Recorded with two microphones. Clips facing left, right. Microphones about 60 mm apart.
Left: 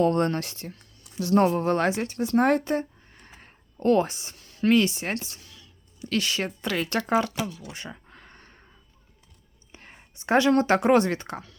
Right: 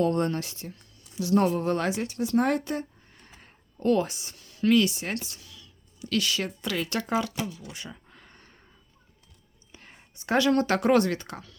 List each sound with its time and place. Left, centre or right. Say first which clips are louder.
0.0 s speech: left 3 dB; left
7.7 s a sound: left 2 dB; left
9.7 s speech: left 2 dB; left